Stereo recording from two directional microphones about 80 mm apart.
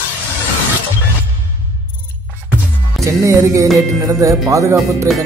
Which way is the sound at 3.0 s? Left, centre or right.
Right.